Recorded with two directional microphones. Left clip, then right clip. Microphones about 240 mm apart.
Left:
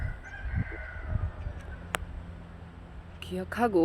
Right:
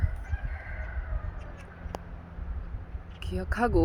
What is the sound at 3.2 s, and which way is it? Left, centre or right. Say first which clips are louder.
Speech: even; centre.